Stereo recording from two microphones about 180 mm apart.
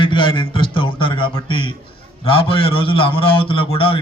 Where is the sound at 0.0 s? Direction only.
30° left (ahead or behind).